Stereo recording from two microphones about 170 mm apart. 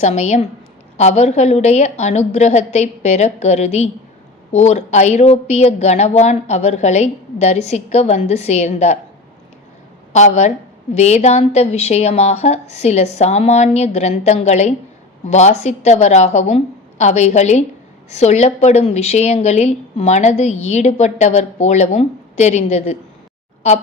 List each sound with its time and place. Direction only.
0.0 s a woman's voice: 40° left (ahead or behind)
10.1 s a woman's voice: 45° left (ahead or behind)